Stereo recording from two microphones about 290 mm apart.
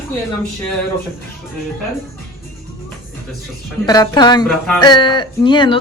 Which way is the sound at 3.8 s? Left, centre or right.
Centre.